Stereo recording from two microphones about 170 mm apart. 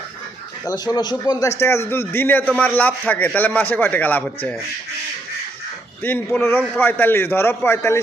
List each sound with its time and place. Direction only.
0.7 s a man's voice: 25° left (ahead or behind)
6.0 s a man's voice: 10° left (ahead or behind)